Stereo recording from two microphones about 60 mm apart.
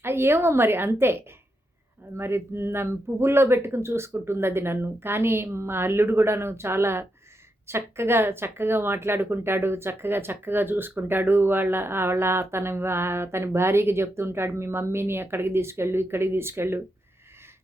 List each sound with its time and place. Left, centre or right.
0.0 s a woman's voice: right